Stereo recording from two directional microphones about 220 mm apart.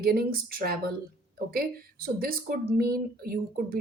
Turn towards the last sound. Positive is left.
turn(degrees=-40)  # may be behind; listen again after turning